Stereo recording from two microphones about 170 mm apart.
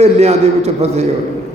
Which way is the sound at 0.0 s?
40° right (ahead or behind).